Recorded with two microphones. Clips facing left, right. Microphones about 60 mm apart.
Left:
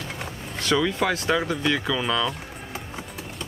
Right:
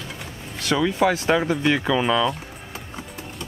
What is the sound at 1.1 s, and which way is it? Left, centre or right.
Speech, right.